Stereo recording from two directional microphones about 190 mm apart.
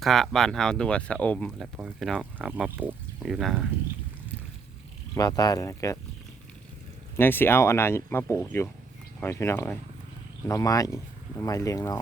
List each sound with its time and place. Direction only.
0.0 s speech: centre (ahead or behind)
5.1 s speech: 20° left (ahead or behind)
7.2 s speech: 10° left (ahead or behind)